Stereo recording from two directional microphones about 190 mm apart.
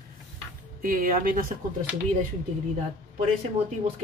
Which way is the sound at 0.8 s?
45° right (ahead or behind).